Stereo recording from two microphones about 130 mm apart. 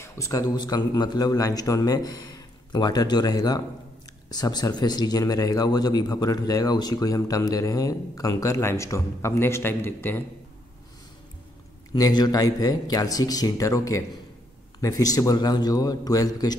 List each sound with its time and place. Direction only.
0.0 s a man's voice: 25° left (ahead or behind)
11.9 s speech: 35° left (ahead or behind)